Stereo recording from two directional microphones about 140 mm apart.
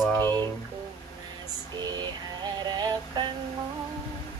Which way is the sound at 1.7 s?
30° right (ahead or behind).